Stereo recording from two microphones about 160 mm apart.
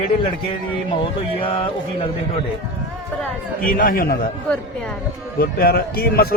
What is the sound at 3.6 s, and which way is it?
Speech, 60° left (ahead or behind).